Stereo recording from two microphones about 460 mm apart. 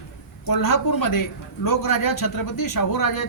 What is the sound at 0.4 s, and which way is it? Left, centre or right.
A man's voice, left.